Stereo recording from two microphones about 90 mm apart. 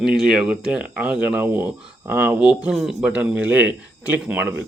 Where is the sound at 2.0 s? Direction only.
20° right (ahead or behind); by 3.1 s 5° right (ahead or behind).